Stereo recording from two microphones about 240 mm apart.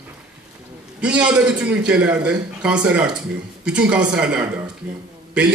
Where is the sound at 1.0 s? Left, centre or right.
Centre.